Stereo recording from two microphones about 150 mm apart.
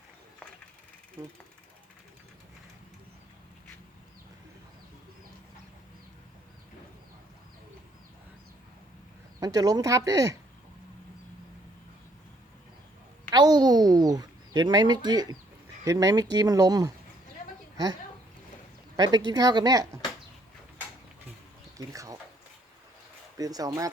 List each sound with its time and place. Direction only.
9.4 s speech: 25° right (ahead or behind)
13.3 s a sound: 30° right (ahead or behind)
15.8 s speech: 25° right (ahead or behind)
18.9 s speech: 25° right (ahead or behind)
21.8 s a sound: 20° right (ahead or behind)
23.4 s speech: 25° right (ahead or behind)